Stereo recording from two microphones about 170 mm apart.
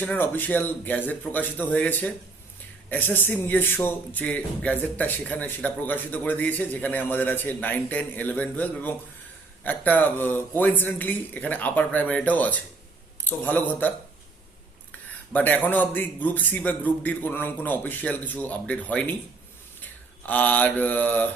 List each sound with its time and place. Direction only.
0.0 s speech: 10° left (ahead or behind)
15.3 s speech: 10° left (ahead or behind)
19.8 s mantra: 10° left (ahead or behind)